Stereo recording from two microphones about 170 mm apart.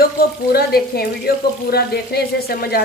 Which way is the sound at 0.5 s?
65° left (ahead or behind).